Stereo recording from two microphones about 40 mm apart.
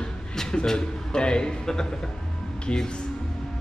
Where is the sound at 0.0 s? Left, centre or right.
Centre.